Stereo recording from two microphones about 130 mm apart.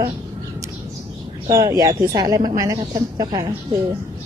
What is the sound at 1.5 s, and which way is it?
A woman's voice, 25° right (ahead or behind).